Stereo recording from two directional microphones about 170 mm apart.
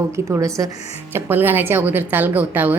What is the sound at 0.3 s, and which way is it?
A woman's voice, 20° right (ahead or behind).